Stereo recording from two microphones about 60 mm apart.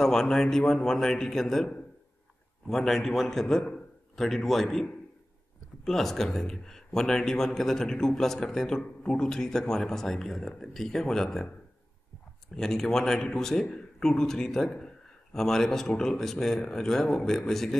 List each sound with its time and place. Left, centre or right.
0.0 s a man's voice: centre
5.9 s a man's voice: centre
12.5 s a man's voice: centre